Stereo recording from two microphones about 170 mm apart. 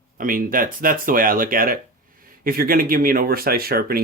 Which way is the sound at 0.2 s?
55° right (ahead or behind).